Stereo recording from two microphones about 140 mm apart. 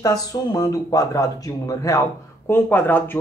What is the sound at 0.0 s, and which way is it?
Speech, 25° left (ahead or behind).